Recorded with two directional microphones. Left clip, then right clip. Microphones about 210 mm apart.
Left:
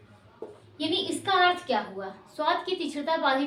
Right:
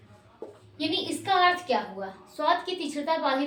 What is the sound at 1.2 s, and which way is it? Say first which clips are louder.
A woman's voice: right 1 dB; 20° left (ahead or behind).